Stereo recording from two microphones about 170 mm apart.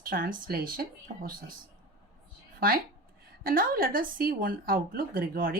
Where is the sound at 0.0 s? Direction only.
55° right (ahead or behind).